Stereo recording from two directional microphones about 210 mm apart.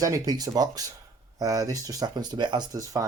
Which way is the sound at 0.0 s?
15° right (ahead or behind).